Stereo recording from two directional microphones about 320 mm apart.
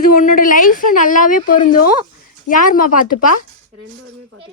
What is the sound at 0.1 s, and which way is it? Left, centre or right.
A woman's voice, left.